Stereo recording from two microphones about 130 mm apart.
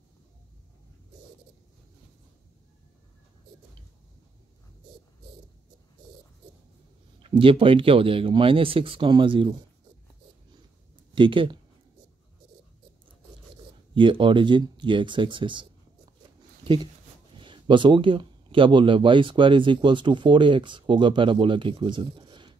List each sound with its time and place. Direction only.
7.2 s speech: 40° right (ahead or behind)
11.1 s speech: 40° right (ahead or behind)
13.9 s speech: 40° right (ahead or behind)